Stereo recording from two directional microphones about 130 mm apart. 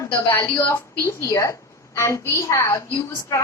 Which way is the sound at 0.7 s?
20° left (ahead or behind).